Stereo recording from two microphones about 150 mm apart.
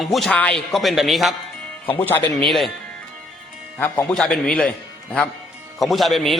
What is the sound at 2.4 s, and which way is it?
Speech, centre (ahead or behind).